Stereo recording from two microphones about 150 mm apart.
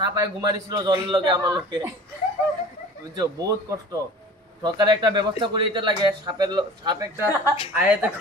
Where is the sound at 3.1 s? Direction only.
25° right (ahead or behind).